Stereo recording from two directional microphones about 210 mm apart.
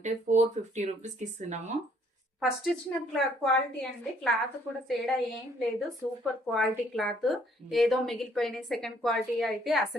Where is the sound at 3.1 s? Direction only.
Centre (ahead or behind).